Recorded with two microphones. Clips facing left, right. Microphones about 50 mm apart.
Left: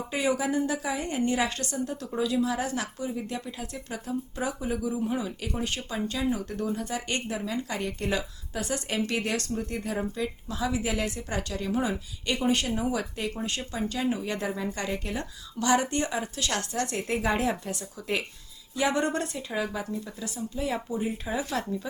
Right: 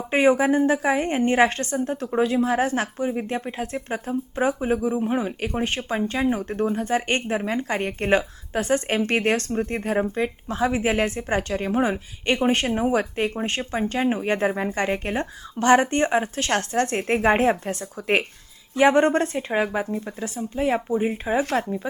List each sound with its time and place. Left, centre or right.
0.1 s speech: right